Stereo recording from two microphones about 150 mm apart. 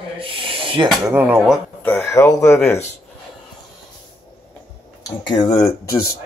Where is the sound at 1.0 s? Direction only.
15° right (ahead or behind).